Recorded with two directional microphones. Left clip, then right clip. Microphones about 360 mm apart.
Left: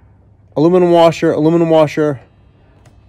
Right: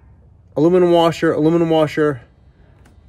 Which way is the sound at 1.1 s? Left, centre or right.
Centre.